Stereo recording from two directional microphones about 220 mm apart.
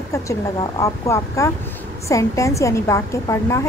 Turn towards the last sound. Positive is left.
turn(degrees=15)  # may be behind; listen again after turning